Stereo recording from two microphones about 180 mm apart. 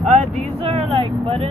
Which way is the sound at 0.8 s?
30° right (ahead or behind).